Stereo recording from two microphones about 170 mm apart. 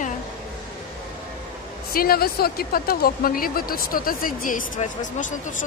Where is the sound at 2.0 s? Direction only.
65° left (ahead or behind); by 5.7 s 50° left (ahead or behind).